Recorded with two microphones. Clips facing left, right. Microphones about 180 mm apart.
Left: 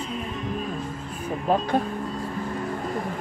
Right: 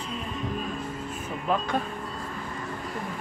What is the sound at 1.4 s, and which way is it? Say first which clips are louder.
Music: left 4 dB; 35° left (ahead or behind).